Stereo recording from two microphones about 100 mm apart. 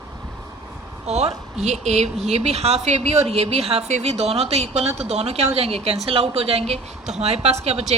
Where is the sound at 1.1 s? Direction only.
90° right.